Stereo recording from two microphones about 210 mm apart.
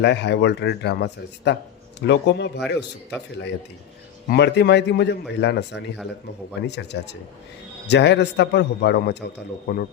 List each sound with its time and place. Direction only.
0.0 s speech: 55° left (ahead or behind)
4.3 s a man's voice: 55° left (ahead or behind)